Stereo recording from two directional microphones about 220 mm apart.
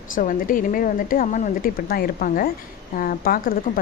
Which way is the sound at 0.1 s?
40° left (ahead or behind).